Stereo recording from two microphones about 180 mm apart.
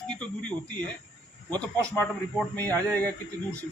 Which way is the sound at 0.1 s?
5° left (ahead or behind).